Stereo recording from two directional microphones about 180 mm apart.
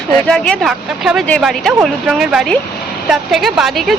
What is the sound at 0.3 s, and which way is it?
Speech, centre (ahead or behind).